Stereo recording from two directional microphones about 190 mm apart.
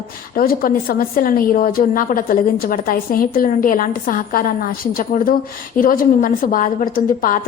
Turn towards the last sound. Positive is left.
turn(degrees=45)  # may be behind; listen again after turning